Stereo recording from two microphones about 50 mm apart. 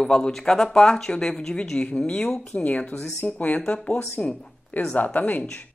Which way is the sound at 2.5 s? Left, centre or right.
Left.